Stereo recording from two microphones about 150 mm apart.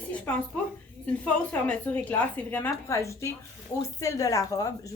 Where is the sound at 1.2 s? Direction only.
10° left (ahead or behind).